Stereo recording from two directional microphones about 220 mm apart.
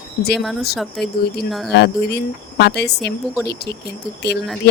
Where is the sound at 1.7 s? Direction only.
50° left (ahead or behind).